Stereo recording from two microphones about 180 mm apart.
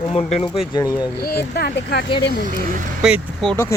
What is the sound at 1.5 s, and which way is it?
Speech, 60° left (ahead or behind).